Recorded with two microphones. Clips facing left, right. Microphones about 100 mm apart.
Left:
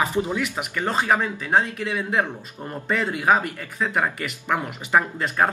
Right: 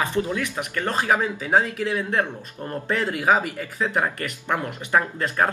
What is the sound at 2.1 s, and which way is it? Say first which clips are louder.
Speech: left 1 dB; 15° left (ahead or behind).